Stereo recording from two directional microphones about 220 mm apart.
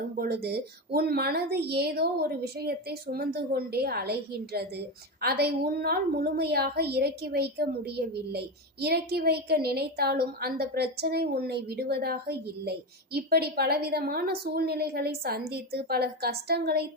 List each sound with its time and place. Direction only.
0.2 s a woman's voice: 45° right (ahead or behind)